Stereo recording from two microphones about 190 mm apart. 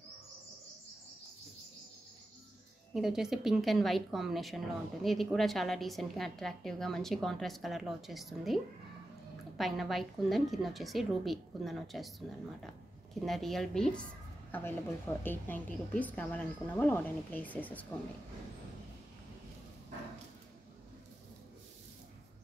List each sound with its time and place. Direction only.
2.9 s a woman's voice: centre (ahead or behind)
9.6 s a woman's voice: centre (ahead or behind)